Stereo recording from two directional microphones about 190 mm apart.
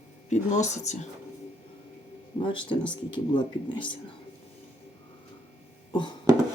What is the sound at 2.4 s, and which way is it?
Speech, 25° left (ahead or behind).